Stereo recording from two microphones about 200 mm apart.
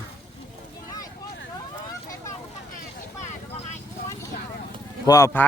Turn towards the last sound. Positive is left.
turn(degrees=15)  # may be behind; listen again after turning